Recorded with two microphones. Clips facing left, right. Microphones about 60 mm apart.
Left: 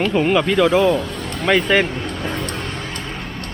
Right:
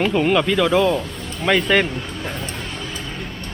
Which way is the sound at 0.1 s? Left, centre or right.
Centre.